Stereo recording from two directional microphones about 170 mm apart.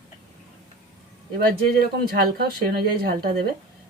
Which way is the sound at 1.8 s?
65° right (ahead or behind).